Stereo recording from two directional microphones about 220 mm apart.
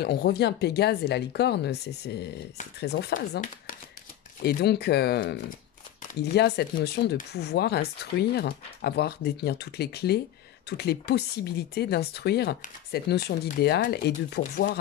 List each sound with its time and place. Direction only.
0.0 s speech: 45° left (ahead or behind)